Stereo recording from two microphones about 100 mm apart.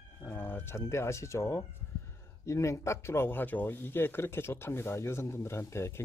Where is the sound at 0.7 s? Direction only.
30° left (ahead or behind).